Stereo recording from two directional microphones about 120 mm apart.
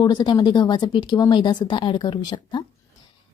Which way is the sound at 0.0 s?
40° left (ahead or behind).